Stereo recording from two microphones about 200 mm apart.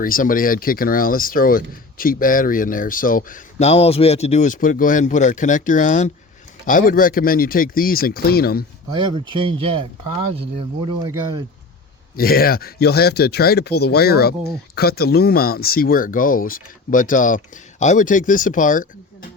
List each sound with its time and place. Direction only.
0.0 s speech: 45° left (ahead or behind)
8.9 s speech: 25° right (ahead or behind)
12.1 s speech: 50° left (ahead or behind)